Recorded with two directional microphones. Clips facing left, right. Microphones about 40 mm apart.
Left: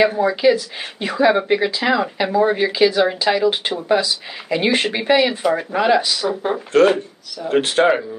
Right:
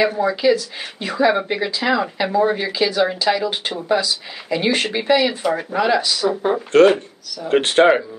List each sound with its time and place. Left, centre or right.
0.0 s speech: centre
6.1 s speech: centre
7.8 s speech: centre